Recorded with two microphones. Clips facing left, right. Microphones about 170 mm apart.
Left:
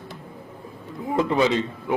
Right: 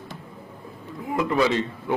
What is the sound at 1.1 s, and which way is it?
Speech, 25° left (ahead or behind).